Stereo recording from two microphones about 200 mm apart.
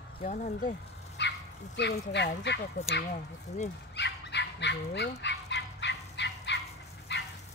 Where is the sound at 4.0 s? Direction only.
60° left (ahead or behind).